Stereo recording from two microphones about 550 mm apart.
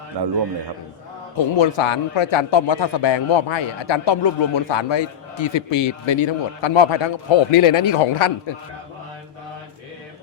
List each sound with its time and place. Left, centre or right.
0.1 s a man's voice: right
1.5 s a man's voice: left